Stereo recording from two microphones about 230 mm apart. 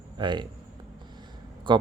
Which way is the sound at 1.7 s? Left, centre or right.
Right.